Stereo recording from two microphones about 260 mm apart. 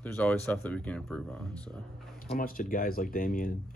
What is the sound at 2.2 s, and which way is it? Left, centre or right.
Speech, left.